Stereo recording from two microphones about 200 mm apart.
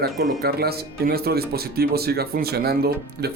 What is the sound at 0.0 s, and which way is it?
Speech, 50° right (ahead or behind).